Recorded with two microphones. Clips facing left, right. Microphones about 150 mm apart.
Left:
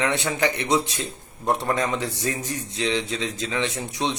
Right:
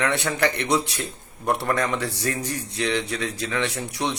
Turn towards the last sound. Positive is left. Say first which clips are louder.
# even
turn(degrees=20)  # may be behind; listen again after turning